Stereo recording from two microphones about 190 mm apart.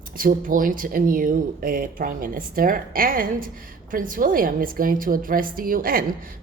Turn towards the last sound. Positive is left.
turn(degrees=-50)  # may be behind; listen again after turning